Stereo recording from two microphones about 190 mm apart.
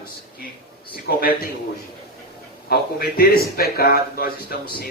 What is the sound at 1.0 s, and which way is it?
Speech, 55° left (ahead or behind).